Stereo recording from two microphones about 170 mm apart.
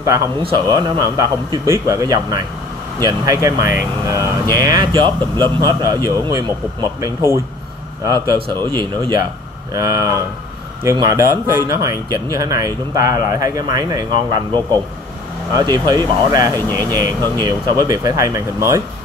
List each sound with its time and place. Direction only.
0.4 s speech: 25° right (ahead or behind)